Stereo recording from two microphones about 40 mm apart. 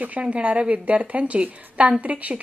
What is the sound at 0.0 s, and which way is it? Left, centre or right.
A woman's voice, right.